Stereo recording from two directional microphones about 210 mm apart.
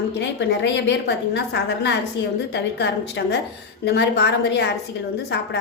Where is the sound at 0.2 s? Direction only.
55° left (ahead or behind).